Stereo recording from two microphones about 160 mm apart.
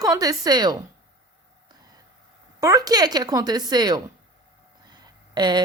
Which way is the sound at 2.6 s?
20° right (ahead or behind).